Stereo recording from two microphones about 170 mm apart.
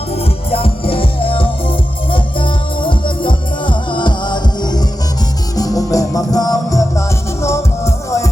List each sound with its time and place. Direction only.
0.2 s music: 35° left (ahead or behind); by 8.3 s 15° left (ahead or behind)